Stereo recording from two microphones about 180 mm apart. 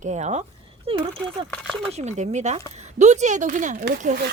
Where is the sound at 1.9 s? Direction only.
40° right (ahead or behind).